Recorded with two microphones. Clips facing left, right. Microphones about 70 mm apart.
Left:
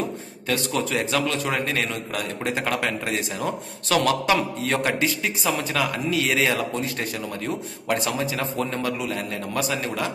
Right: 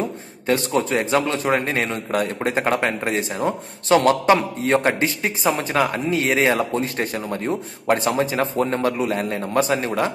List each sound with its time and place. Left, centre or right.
0.0 s a man's voice: right